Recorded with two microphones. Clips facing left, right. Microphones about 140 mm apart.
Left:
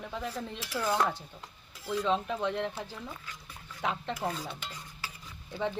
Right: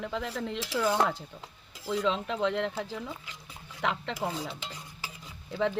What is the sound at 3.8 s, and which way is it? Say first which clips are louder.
Speech: right 2 dB; 80° right.